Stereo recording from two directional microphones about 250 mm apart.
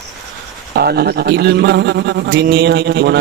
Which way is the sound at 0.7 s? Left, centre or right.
Right.